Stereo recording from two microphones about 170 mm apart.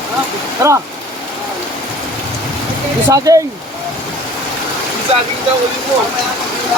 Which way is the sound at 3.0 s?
20° right (ahead or behind).